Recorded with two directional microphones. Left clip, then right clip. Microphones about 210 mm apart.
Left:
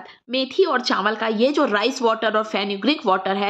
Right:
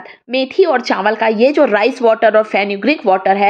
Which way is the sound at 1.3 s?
45° left (ahead or behind).